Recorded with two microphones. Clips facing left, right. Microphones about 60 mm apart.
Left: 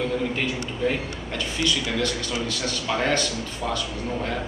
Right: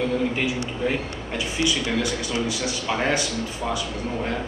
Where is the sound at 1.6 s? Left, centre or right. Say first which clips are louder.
Right 1 dB; centre.